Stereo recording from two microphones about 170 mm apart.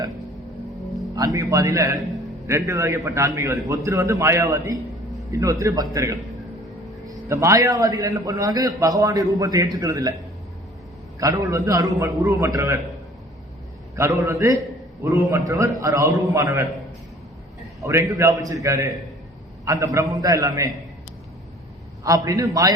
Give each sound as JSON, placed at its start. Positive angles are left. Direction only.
{"t": 1.1, "sound": "a man's voice", "side_deg": -20}
{"t": 11.2, "sound": "a man's voice", "side_deg": -20}
{"t": 13.9, "sound": "a man's voice", "side_deg": -15}
{"t": 17.8, "sound": "a man's voice", "side_deg": -15}
{"t": 22.0, "sound": "a man's voice", "side_deg": -20}